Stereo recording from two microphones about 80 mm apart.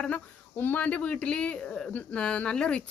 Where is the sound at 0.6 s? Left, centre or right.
Left.